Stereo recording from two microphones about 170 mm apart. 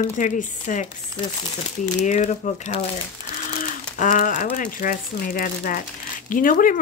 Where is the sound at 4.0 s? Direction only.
50° left (ahead or behind).